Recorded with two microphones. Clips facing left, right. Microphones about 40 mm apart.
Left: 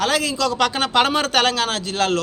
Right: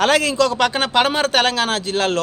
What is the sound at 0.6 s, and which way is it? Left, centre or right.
A man's voice, right.